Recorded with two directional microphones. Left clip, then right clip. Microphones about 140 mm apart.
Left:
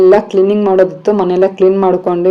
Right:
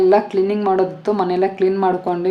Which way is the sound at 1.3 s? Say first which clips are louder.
Left 9 dB; 15° left (ahead or behind).